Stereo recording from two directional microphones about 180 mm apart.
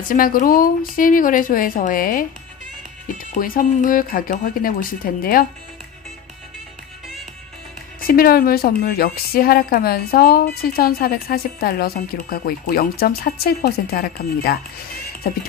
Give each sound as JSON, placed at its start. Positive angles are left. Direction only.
{"t": 0.1, "sound": "speech", "side_deg": 50}
{"t": 8.0, "sound": "a woman's voice", "side_deg": 55}